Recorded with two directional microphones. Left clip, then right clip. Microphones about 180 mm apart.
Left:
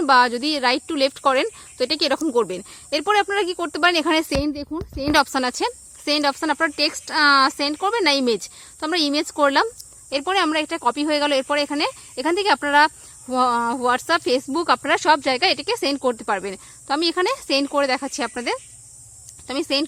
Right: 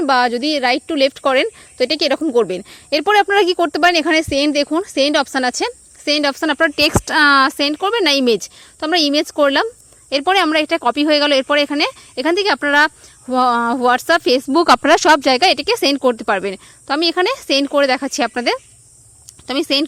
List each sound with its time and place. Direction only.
0.0 s a woman's voice: 15° right (ahead or behind); by 3.7 s 35° right (ahead or behind)
3.7 s speech: 20° right (ahead or behind)